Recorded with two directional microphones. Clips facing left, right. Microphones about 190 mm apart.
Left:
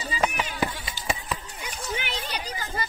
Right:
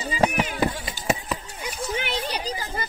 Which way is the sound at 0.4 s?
45° right (ahead or behind).